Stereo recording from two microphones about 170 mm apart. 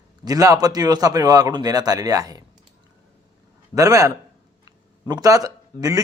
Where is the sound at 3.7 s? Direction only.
20° right (ahead or behind).